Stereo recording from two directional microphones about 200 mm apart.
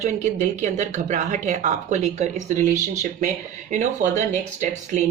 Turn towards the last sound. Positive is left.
turn(degrees=-35)  # may be behind; listen again after turning